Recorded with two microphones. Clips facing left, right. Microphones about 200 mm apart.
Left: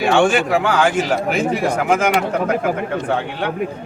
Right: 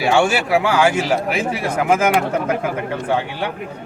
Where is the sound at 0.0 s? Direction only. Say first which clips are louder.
Left 2 dB; 5° right (ahead or behind).